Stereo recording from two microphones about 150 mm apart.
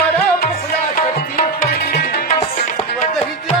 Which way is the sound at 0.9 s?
70° left (ahead or behind).